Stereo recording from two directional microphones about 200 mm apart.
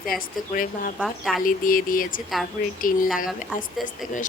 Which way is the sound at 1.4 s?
45° left (ahead or behind).